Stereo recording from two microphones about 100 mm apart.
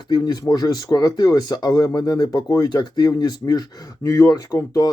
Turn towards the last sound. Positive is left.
turn(degrees=40)  # may be behind; listen again after turning